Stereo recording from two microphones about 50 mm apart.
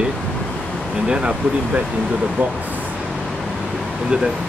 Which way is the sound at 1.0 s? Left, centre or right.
Centre.